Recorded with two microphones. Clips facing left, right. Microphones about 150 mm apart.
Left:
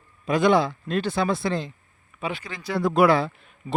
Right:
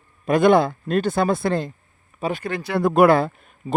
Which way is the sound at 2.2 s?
40° right (ahead or behind).